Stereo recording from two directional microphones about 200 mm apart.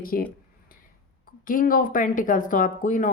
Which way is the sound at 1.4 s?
45° left (ahead or behind).